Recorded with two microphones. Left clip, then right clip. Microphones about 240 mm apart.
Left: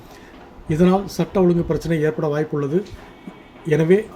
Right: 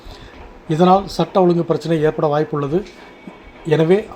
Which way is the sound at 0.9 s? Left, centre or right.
Centre.